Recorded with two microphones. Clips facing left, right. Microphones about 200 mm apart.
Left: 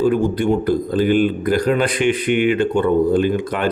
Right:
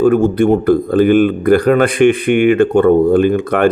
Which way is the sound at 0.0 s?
50° right (ahead or behind).